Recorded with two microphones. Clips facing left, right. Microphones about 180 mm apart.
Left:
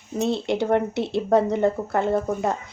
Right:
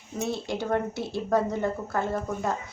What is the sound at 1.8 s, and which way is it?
Speech, 40° left (ahead or behind).